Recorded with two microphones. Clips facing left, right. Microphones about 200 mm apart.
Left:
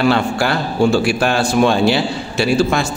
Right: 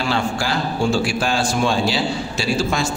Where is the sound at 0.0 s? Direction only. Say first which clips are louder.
Left 6 dB; 60° left (ahead or behind).